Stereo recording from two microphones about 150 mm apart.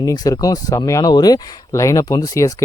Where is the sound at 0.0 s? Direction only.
25° left (ahead or behind).